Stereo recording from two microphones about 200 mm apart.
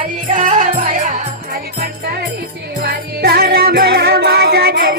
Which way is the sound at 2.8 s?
50° right (ahead or behind).